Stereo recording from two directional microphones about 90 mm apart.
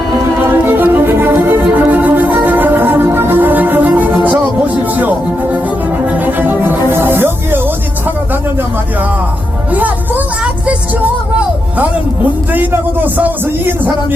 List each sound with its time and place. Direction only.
0.4 s music: 20° right (ahead or behind)
9.7 s music: 20° right (ahead or behind)
12.5 s a sound: 20° right (ahead or behind)